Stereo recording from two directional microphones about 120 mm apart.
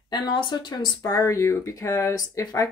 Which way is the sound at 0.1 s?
40° left (ahead or behind).